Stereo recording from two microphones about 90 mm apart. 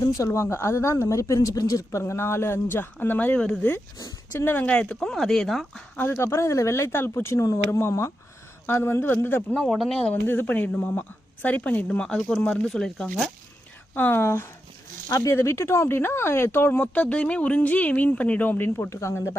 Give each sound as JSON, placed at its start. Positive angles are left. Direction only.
{"t": 0.2, "sound": "speech", "side_deg": 30}
{"t": 3.9, "sound": "speech", "side_deg": 35}
{"t": 4.5, "sound": "speech", "side_deg": 15}
{"t": 6.0, "sound": "speech", "side_deg": 30}
{"t": 9.6, "sound": "speech", "side_deg": 0}
{"t": 10.2, "sound": "speech", "side_deg": 20}
{"t": 13.9, "sound": "speech", "side_deg": 20}